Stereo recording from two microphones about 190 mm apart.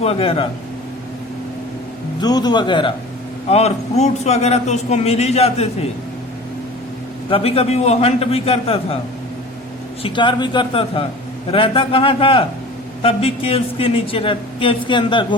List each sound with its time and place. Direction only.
0.0 s a woman's voice: 30° left (ahead or behind)
2.2 s a woman's voice: 20° left (ahead or behind)
3.5 s a man's voice: 35° left (ahead or behind)
7.3 s a man's voice: 30° left (ahead or behind)
10.0 s a woman's voice: 25° left (ahead or behind)